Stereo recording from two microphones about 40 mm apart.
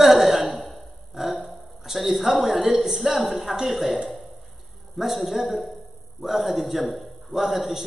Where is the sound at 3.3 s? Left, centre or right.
Centre.